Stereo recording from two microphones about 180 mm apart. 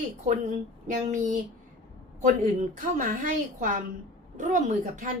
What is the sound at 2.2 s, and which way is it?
Speech, 45° right (ahead or behind).